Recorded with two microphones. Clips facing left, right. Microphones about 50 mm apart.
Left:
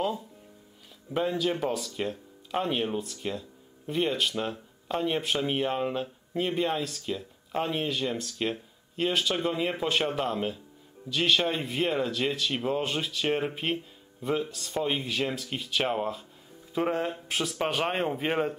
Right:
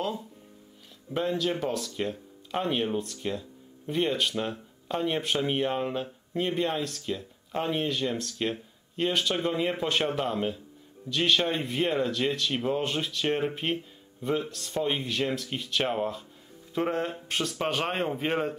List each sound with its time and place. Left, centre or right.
1.1 s speech: centre